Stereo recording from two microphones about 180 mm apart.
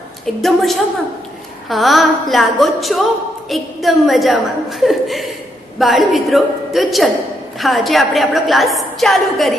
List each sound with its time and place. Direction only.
0.4 s a woman's voice: centre (ahead or behind)